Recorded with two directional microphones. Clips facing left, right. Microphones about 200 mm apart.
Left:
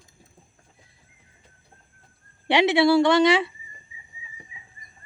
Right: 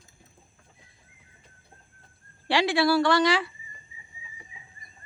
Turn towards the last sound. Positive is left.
turn(degrees=25)  # may be behind; listen again after turning